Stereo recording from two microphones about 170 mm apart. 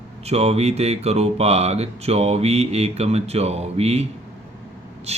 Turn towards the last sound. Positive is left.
turn(degrees=-40)  # may be behind; listen again after turning